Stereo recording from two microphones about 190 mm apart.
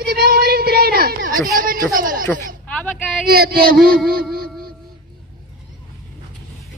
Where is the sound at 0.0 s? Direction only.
50° right (ahead or behind).